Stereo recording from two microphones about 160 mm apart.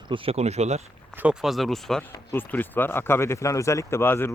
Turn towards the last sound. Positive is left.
turn(degrees=15)  # may be behind; listen again after turning